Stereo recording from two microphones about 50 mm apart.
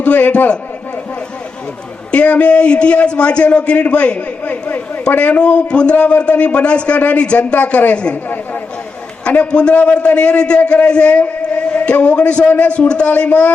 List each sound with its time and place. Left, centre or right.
0.0 s speech: left
2.1 s a man's voice: left
9.2 s a man's voice: left